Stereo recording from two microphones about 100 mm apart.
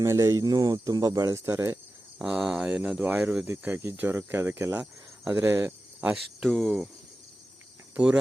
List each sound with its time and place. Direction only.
0.0 s speech: 30° right (ahead or behind)
2.1 s speech: 10° right (ahead or behind)
3.0 s speech: 15° right (ahead or behind)
6.4 s speech: centre (ahead or behind)
7.9 s speech: 15° right (ahead or behind)